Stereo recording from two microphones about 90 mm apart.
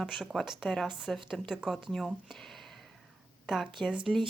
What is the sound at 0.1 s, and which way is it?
A woman's voice, 5° right (ahead or behind).